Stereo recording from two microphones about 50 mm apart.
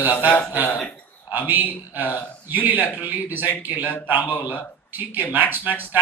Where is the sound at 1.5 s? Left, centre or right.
Right.